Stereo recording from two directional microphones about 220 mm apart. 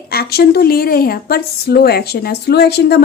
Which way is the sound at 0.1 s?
45° left (ahead or behind).